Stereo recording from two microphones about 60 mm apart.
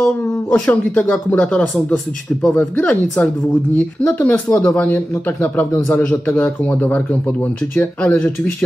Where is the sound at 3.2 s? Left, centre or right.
Left.